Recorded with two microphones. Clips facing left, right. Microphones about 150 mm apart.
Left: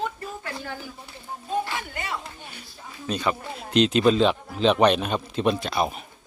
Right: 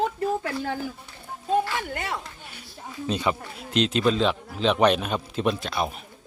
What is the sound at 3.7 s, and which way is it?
Speech, centre (ahead or behind).